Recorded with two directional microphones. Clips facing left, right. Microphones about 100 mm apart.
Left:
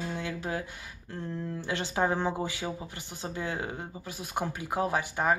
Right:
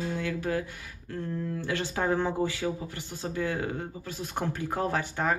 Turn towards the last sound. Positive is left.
turn(degrees=15)  # may be behind; listen again after turning